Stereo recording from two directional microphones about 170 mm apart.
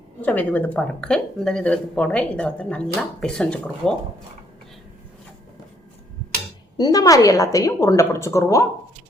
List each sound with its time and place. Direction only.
0.2 s speech: 10° left (ahead or behind)
6.7 s a woman's voice: 20° left (ahead or behind)